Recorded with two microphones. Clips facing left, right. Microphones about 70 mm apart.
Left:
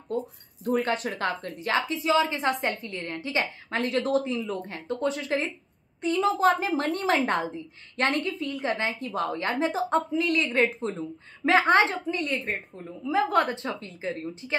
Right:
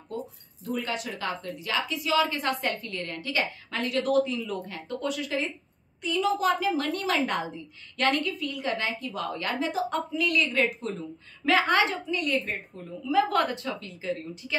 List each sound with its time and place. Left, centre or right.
0.7 s a woman's voice: left